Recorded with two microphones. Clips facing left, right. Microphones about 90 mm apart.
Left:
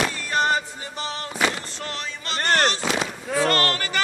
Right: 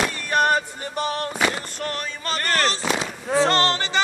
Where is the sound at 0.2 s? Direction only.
55° right (ahead or behind).